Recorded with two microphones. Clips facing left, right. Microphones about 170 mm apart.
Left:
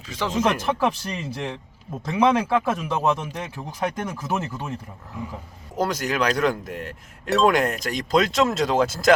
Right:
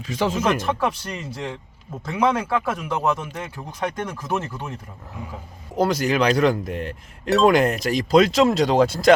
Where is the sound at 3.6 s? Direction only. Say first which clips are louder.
Even; 5° left (ahead or behind).